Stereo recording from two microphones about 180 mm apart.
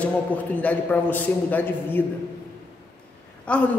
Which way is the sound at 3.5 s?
5° left (ahead or behind).